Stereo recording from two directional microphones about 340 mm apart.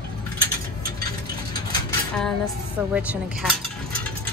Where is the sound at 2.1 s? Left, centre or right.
Centre.